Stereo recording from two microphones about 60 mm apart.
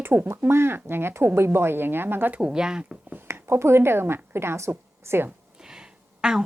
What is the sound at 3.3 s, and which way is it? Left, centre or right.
A woman's voice, right.